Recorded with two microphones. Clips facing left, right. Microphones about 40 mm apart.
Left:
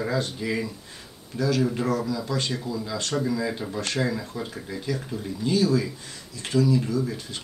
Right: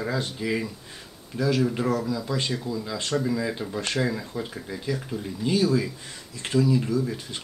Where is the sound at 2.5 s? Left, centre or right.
Centre.